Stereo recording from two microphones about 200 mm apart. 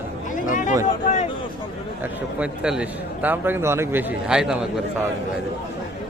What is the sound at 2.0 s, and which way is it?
A man's voice, 5° right (ahead or behind).